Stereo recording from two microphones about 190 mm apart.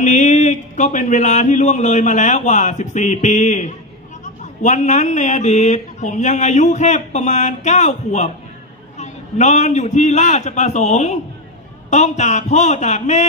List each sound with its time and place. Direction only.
0.0 s a man's voice: 40° left (ahead or behind)